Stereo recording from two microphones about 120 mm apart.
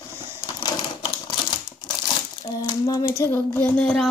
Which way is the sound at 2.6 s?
30° left (ahead or behind).